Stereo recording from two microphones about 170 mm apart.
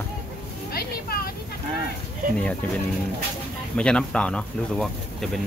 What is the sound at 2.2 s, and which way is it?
Speech, 55° right (ahead or behind).